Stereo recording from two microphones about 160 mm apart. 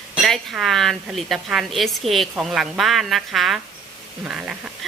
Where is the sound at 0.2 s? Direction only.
Centre (ahead or behind).